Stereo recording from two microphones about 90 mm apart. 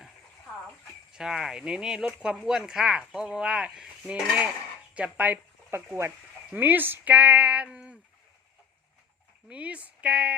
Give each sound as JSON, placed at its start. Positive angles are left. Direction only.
{"t": 1.1, "sound": "speech", "side_deg": -5}
{"t": 9.5, "sound": "speech", "side_deg": -15}